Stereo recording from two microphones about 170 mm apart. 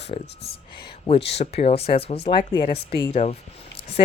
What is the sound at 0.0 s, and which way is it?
Speech, 35° left (ahead or behind).